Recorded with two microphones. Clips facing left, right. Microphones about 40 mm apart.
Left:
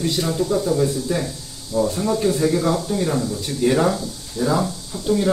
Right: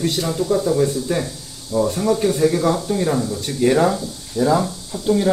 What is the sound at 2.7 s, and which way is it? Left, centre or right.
Speech, centre.